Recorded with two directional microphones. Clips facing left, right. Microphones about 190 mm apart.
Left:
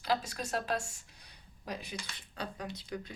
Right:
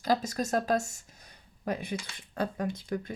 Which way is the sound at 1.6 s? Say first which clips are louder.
Right 8 dB; 55° right (ahead or behind).